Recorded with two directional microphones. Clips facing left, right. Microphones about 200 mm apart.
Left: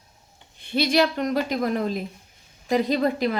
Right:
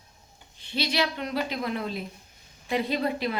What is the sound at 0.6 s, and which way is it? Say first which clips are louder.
Speech: left 7 dB; 50° left (ahead or behind).